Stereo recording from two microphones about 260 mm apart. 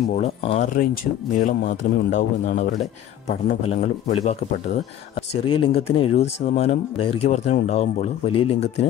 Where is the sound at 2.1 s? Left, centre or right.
Left.